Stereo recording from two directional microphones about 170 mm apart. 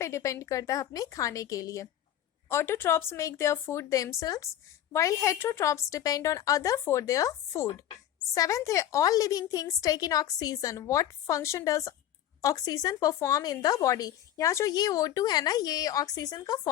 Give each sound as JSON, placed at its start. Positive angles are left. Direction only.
{"t": 0.0, "sound": "speech", "side_deg": 15}